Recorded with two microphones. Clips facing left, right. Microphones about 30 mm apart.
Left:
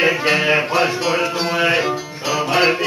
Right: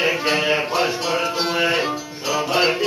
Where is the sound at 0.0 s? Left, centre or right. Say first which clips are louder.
Left 3 dB; centre.